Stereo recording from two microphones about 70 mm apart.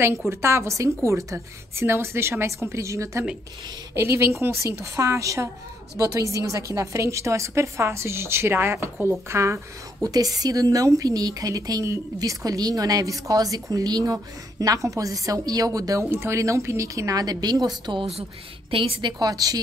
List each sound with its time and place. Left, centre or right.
0.3 s a woman's voice: right
10.0 s a woman's voice: right
14.1 s a woman's voice: right
16.1 s a woman's voice: right
17.9 s a woman's voice: right
19.0 s a woman's voice: right